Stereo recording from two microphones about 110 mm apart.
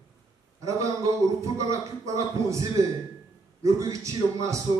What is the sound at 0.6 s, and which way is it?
A man's voice, 30° right (ahead or behind).